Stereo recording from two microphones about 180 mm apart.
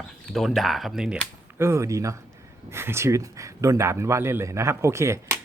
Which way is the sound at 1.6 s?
15° right (ahead or behind).